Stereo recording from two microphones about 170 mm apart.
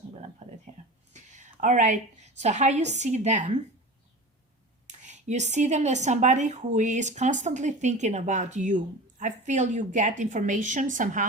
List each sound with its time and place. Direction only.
0.4 s a woman's voice: 40° right (ahead or behind)
4.9 s a woman's voice: 45° right (ahead or behind)